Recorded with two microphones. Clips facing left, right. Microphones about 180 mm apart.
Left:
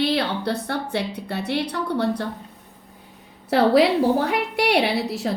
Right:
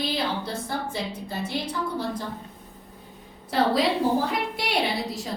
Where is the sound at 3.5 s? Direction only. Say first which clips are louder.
Left 6 dB; 70° left (ahead or behind).